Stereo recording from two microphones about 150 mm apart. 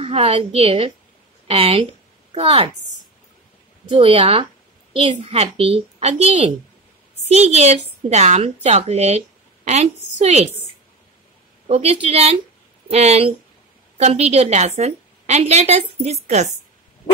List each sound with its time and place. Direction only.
0.0 s a woman's voice: 40° right (ahead or behind)
3.9 s a woman's voice: 40° right (ahead or behind)
11.6 s a woman's voice: 45° right (ahead or behind)